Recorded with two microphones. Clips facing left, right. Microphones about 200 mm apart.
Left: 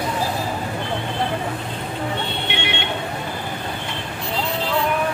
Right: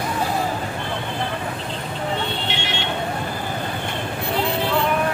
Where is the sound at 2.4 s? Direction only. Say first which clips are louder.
Left 1 dB; 60° left (ahead or behind).